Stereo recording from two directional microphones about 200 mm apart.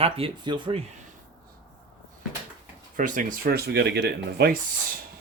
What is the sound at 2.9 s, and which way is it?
Speech, 40° right (ahead or behind).